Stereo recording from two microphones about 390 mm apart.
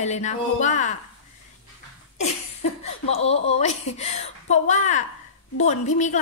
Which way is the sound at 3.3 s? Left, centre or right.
Centre.